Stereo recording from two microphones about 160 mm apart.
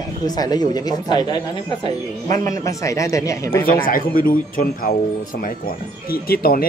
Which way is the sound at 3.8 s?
60° left (ahead or behind).